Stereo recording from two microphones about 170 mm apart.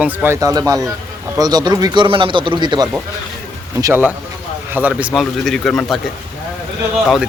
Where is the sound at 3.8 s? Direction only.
15° right (ahead or behind); by 6.0 s centre (ahead or behind).